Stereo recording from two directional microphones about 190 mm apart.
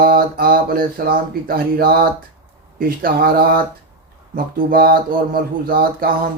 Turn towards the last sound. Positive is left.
turn(degrees=-50)  # may be behind; listen again after turning